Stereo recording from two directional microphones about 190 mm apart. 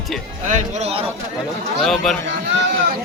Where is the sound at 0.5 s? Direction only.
35° right (ahead or behind).